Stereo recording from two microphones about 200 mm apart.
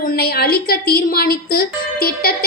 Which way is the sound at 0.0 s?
50° left (ahead or behind).